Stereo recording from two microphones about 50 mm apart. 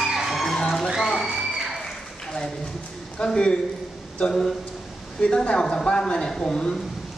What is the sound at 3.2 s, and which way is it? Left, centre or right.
A man's voice, centre.